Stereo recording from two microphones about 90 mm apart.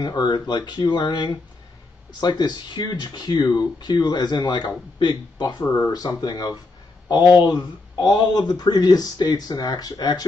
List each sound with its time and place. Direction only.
0.0 s speech: 50° left (ahead or behind)